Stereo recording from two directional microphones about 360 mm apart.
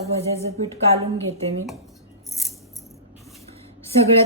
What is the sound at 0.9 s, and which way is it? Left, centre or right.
Speech, centre.